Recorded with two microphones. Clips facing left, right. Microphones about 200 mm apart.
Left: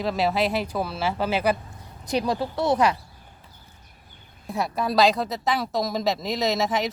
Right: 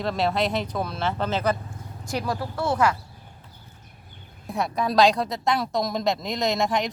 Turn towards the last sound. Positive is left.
turn(degrees=5)  # may be behind; listen again after turning